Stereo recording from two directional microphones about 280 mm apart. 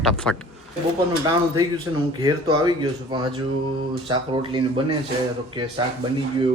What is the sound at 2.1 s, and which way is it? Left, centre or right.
Speech, centre.